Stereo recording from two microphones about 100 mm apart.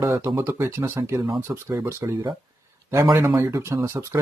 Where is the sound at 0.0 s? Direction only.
30° right (ahead or behind).